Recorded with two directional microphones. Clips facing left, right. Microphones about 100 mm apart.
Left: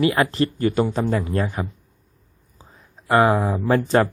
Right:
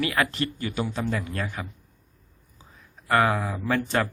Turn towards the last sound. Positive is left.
turn(degrees=35)  # may be behind; listen again after turning